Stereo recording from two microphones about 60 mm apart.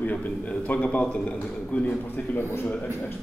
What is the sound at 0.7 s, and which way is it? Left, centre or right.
Speech, left.